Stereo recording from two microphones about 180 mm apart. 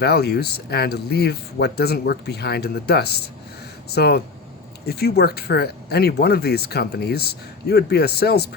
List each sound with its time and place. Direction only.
0.0 s speech: 65° left (ahead or behind)